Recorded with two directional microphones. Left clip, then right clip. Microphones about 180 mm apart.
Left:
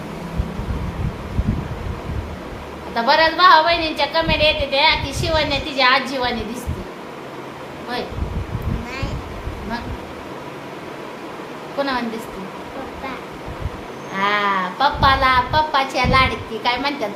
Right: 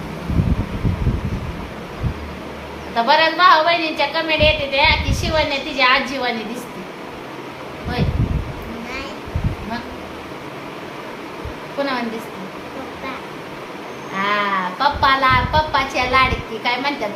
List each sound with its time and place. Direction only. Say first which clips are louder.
2.9 s a woman's voice: right 1 dB; 25° left (ahead or behind)
11.8 s a woman's voice: even; 25° left (ahead or behind)
14.2 s a woman's voice: left 1 dB; 25° left (ahead or behind)